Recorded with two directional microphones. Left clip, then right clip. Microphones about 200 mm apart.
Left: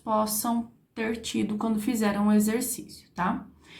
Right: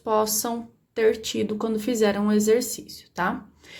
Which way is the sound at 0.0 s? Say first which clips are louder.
Right 4 dB; 35° right (ahead or behind).